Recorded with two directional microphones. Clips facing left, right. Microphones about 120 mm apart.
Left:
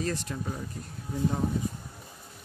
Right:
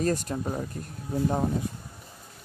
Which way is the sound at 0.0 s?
45° right (ahead or behind).